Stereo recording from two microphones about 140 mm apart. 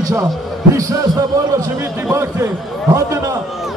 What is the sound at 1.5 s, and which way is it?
A man's voice, 20° right (ahead or behind).